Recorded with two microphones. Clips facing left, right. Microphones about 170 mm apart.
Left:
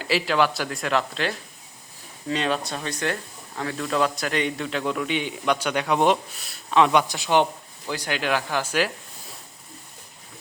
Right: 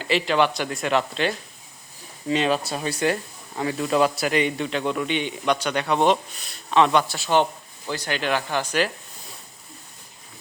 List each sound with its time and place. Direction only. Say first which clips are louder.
0.0 s speech: right 1 dB; 5° left (ahead or behind)
7.1 s speech: even; 15° left (ahead or behind)